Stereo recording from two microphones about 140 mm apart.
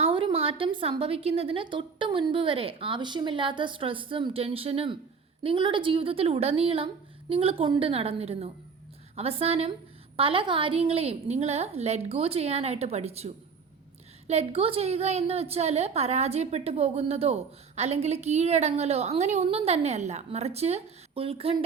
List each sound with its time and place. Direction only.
0.0 s a woman's voice: 40° right (ahead or behind)